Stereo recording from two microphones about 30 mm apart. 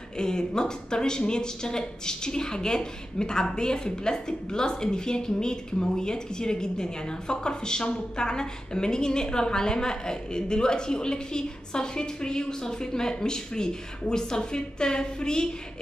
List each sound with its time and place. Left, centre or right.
0.2 s speech: left